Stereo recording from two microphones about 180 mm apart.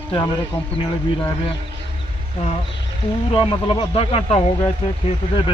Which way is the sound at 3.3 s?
30° left (ahead or behind).